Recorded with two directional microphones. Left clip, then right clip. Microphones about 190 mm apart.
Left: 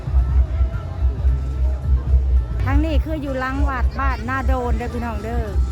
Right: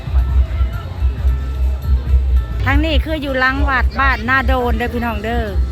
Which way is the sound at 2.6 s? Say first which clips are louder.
Right 6 dB; centre (ahead or behind).